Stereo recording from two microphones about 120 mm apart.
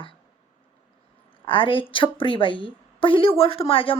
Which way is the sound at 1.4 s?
45° left (ahead or behind).